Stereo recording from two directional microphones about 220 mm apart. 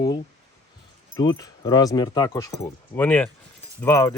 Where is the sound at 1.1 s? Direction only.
15° left (ahead or behind).